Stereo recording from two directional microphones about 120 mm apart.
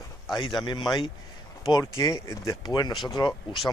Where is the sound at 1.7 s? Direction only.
30° left (ahead or behind).